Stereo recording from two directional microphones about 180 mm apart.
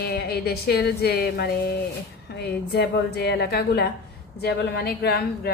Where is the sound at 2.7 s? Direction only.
65° left (ahead or behind).